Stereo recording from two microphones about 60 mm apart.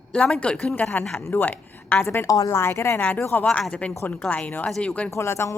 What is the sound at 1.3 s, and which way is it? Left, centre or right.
Speech, left.